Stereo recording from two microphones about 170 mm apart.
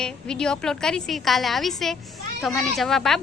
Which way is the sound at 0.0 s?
5° left (ahead or behind).